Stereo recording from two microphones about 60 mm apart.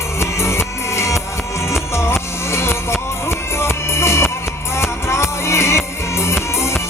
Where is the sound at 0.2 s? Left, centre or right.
Left.